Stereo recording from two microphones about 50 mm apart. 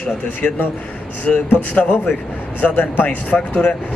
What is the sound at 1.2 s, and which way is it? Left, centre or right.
A man's voice, left.